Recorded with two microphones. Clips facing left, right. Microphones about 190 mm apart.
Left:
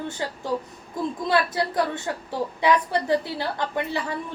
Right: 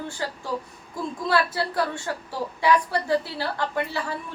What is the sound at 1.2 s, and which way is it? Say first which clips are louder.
A woman's voice: even; 20° left (ahead or behind).